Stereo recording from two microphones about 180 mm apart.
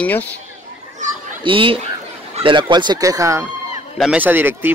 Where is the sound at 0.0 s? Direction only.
10° left (ahead or behind).